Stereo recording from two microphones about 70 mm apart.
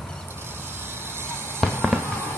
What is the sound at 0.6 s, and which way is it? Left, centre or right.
Vehicle, right.